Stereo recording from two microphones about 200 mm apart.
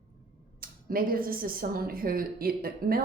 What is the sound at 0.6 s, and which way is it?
A woman's voice, 45° right (ahead or behind).